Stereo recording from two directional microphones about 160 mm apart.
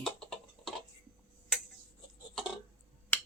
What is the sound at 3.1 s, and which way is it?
Finger snapping, 10° left (ahead or behind).